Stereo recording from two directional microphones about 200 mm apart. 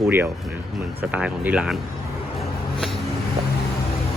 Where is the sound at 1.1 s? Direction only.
5° right (ahead or behind).